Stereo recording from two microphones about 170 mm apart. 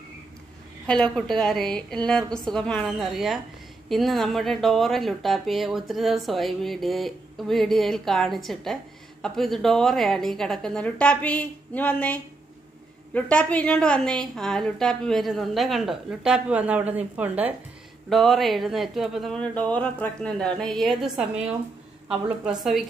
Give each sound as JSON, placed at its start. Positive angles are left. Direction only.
{"t": 0.8, "sound": "speech", "side_deg": 5}
{"t": 18.1, "sound": "speech", "side_deg": 0}